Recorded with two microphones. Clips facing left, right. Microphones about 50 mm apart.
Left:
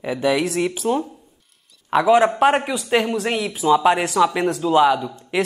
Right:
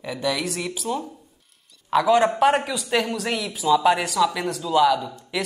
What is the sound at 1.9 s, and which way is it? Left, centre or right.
A man's voice, left.